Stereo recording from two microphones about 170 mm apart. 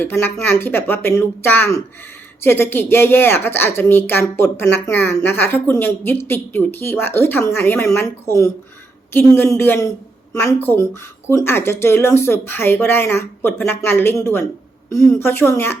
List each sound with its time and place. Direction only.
0.0 s a woman's voice: 10° left (ahead or behind)